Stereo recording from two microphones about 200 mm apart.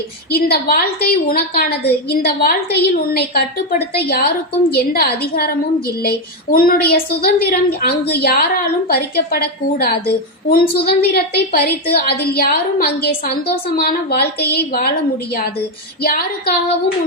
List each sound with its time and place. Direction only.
0.3 s a woman's voice: 50° left (ahead or behind)